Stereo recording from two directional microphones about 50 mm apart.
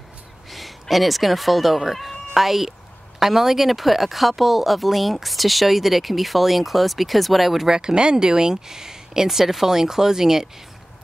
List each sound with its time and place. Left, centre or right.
0.5 s speech: centre